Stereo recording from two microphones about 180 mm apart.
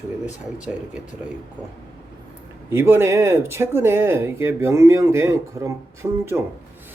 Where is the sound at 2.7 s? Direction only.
15° right (ahead or behind).